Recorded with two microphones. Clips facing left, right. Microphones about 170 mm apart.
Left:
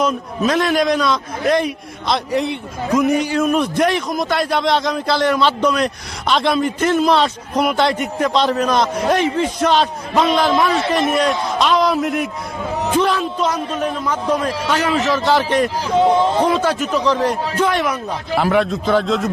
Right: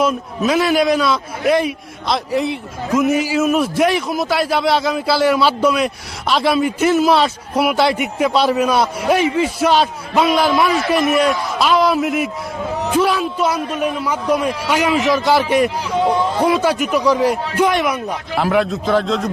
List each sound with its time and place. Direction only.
0.0 s a man's voice: 5° right (ahead or behind)
15.9 s speech: 25° left (ahead or behind)
16.4 s a man's voice: 10° right (ahead or behind)
18.3 s a man's voice: centre (ahead or behind)